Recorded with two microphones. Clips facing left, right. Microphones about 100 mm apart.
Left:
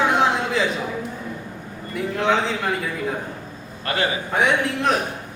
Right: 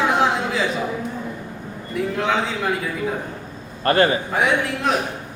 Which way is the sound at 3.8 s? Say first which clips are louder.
Right 7 dB; 45° right (ahead or behind).